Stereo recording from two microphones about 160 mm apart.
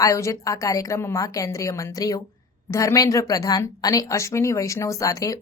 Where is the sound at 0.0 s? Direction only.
20° left (ahead or behind).